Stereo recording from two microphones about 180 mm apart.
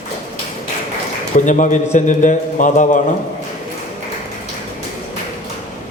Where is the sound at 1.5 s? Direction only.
45° left (ahead or behind).